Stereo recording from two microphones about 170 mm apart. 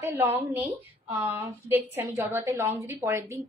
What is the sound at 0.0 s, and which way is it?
A woman's voice, 15° right (ahead or behind).